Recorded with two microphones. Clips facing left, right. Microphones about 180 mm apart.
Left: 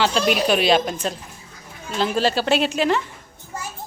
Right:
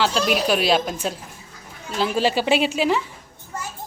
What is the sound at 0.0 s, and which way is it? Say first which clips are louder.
A woman's voice: left 1 dB; centre (ahead or behind).